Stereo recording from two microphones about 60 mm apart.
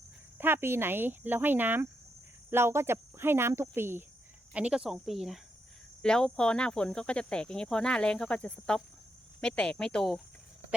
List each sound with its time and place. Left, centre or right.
0.3 s speech: right
4.5 s speech: centre
6.0 s speech: centre